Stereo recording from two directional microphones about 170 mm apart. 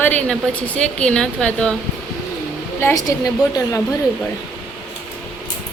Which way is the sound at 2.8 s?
20° left (ahead or behind).